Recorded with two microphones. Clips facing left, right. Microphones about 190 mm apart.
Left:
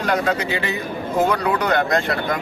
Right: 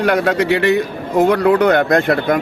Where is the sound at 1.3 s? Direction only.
55° right (ahead or behind).